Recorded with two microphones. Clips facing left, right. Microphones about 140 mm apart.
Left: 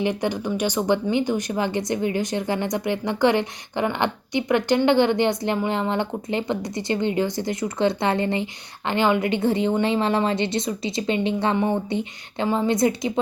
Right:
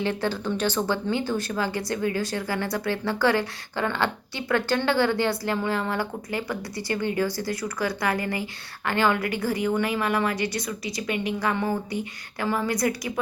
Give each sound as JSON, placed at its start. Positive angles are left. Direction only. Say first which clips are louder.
{"t": 0.0, "sound": "speech", "louder": "left 3 dB", "side_deg": 15}